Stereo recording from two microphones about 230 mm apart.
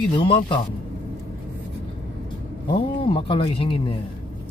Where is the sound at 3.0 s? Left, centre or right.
Left.